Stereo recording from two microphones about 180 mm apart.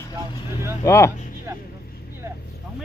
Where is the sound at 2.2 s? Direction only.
15° right (ahead or behind).